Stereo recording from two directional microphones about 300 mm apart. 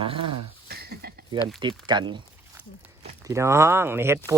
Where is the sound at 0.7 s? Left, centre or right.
Right.